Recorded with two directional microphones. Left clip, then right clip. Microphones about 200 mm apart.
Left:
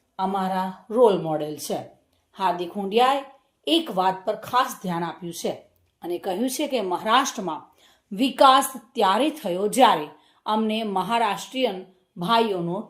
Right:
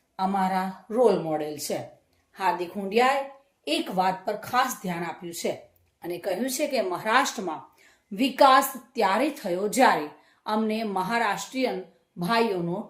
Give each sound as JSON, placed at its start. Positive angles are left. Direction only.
{"t": 0.2, "sound": "a woman's voice", "side_deg": 15}